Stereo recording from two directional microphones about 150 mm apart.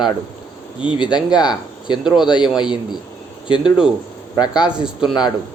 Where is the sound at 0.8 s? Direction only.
30° left (ahead or behind).